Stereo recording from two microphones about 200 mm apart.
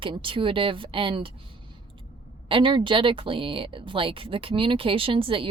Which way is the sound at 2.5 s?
25° right (ahead or behind).